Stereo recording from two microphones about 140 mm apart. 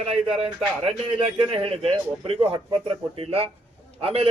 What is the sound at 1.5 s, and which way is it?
A man's voice, 40° right (ahead or behind).